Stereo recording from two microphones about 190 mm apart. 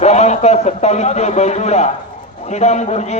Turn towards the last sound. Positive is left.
turn(degrees=35)  # may be behind; listen again after turning